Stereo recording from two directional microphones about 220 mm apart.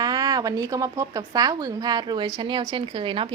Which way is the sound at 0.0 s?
20° right (ahead or behind).